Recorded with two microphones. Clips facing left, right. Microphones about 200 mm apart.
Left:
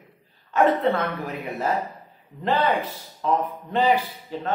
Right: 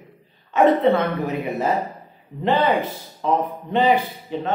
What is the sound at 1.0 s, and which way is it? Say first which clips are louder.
A man's voice: right 5 dB; 30° right (ahead or behind).